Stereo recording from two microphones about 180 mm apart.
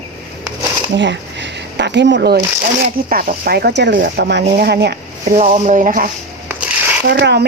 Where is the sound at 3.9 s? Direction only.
60° right (ahead or behind).